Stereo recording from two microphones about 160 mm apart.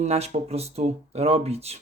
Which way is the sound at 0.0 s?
40° right (ahead or behind).